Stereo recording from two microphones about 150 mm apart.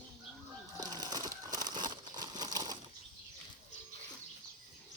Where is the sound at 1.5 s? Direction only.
30° right (ahead or behind).